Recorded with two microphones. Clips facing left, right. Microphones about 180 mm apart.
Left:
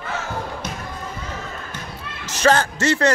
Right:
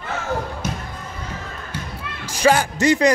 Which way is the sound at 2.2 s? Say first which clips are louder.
Right 1 dB; 10° right (ahead or behind).